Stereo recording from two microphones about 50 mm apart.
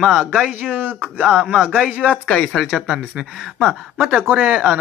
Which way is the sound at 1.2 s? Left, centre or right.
Centre.